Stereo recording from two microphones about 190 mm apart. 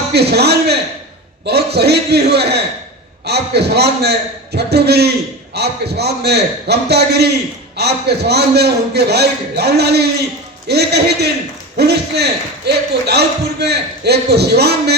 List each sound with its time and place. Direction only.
0.1 s a man's voice: 60° right (ahead or behind)